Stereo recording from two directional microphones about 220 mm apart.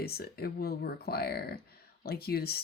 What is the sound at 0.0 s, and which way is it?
Speech, 45° left (ahead or behind).